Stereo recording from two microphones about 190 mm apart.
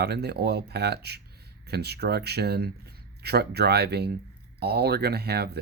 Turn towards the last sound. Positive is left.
turn(degrees=-60)  # may be behind; listen again after turning